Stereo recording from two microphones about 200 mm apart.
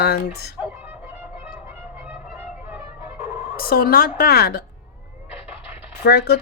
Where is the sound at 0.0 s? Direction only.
55° left (ahead or behind).